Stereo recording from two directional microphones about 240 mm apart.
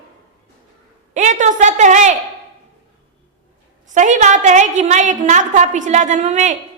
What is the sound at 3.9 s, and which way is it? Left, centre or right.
A woman's voice, right.